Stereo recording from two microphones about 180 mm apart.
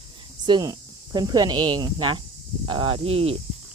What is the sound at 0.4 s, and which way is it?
Speech, 20° right (ahead or behind).